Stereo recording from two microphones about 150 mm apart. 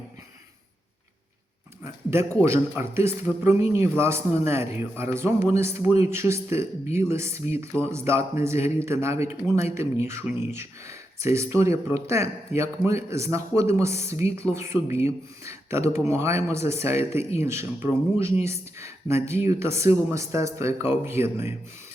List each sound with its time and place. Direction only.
1.8 s speech: 15° right (ahead or behind)